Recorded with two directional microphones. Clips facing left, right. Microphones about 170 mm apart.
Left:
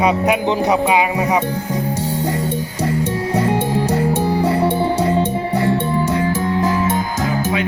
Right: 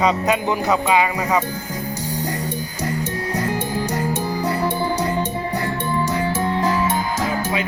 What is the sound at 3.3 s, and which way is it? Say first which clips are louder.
Music: left 6 dB; 30° left (ahead or behind).